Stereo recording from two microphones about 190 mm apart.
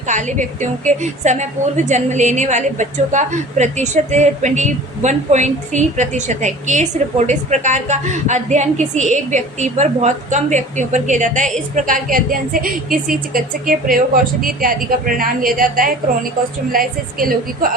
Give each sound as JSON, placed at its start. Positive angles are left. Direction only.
{"t": 0.1, "sound": "a woman's voice", "side_deg": -40}